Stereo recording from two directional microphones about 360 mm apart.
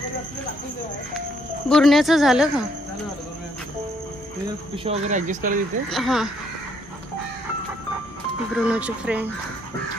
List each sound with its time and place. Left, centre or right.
1.7 s speech: centre
4.8 s speech: right
5.9 s speech: centre
8.6 s speech: centre